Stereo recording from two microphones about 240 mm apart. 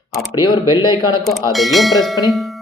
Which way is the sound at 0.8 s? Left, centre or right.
Centre.